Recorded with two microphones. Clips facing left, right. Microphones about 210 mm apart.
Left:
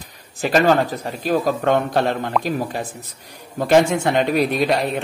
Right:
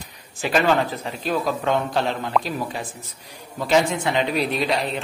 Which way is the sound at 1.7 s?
60° left (ahead or behind).